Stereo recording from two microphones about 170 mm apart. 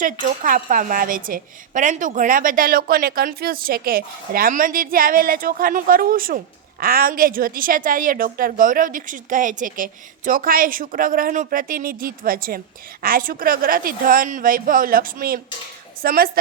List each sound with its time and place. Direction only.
0.0 s a woman's voice: 55° right (ahead or behind)